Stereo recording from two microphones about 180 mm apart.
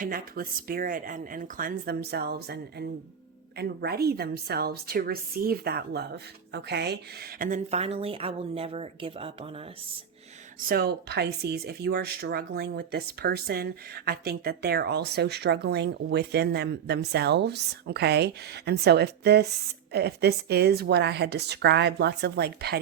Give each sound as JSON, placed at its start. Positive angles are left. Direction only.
{"t": 0.0, "sound": "speech", "side_deg": -55}
{"t": 10.6, "sound": "speech", "side_deg": -55}